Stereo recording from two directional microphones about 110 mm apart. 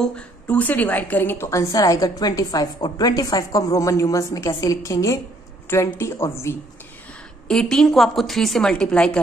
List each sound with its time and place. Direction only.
0.0 s a woman's voice: 10° left (ahead or behind)
7.4 s a woman's voice: 5° left (ahead or behind)